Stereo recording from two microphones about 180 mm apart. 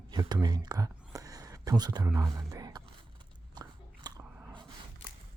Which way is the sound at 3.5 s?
25° right (ahead or behind).